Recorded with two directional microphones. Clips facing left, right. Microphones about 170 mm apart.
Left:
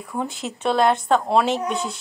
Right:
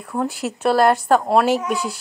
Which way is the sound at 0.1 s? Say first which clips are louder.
Right 5 dB; 10° right (ahead or behind).